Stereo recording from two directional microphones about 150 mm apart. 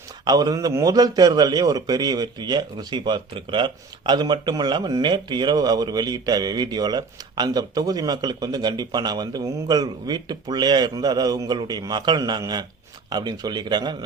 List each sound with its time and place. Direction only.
0.3 s a man's voice: 25° right (ahead or behind)